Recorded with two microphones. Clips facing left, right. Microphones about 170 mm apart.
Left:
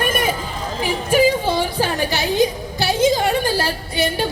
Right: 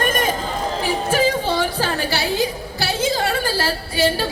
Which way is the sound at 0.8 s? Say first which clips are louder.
Left 4 dB; 15° left (ahead or behind).